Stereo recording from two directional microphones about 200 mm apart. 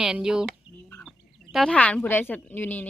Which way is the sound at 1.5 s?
5° left (ahead or behind).